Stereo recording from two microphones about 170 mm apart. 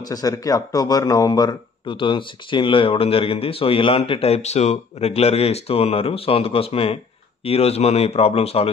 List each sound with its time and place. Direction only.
0.0 s a man's voice: 20° left (ahead or behind)